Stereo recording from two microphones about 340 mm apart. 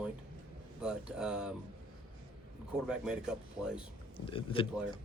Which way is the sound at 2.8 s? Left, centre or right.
Centre.